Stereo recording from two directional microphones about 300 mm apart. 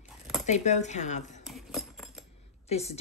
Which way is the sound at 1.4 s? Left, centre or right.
Centre.